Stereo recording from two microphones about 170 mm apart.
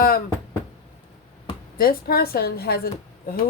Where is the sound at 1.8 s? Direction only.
60° left (ahead or behind).